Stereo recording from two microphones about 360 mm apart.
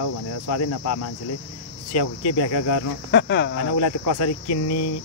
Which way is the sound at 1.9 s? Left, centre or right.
Left.